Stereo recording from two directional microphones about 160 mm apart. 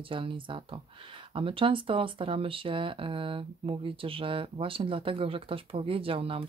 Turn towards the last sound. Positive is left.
turn(degrees=-35)  # may be behind; listen again after turning